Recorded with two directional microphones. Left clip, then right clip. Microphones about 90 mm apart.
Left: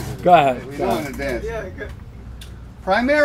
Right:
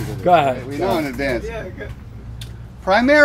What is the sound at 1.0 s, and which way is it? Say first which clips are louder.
Speech: right 4 dB; 25° right (ahead or behind).